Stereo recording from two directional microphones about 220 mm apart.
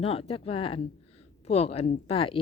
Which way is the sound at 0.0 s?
25° left (ahead or behind).